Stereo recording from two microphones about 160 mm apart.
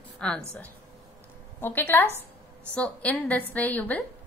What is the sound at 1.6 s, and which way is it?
A woman's voice, 15° left (ahead or behind).